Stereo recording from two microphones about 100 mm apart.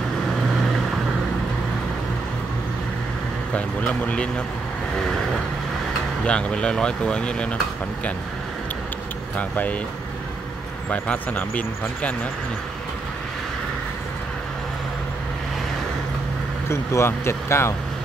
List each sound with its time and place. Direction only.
3.5 s speech: 15° left (ahead or behind)
6.2 s speech: 10° left (ahead or behind)
9.4 s speech: 15° left (ahead or behind)
10.9 s speech: 15° left (ahead or behind)
16.6 s speech: 25° left (ahead or behind)